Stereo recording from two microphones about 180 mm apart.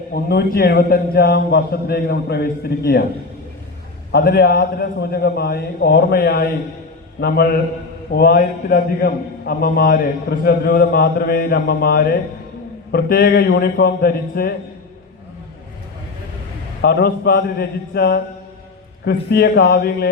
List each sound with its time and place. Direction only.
0.1 s a man's voice: 60° left (ahead or behind)
4.1 s a man's voice: 60° left (ahead or behind)
16.8 s a man's voice: 60° left (ahead or behind)